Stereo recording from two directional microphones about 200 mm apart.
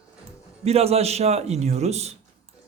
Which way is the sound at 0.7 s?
30° right (ahead or behind).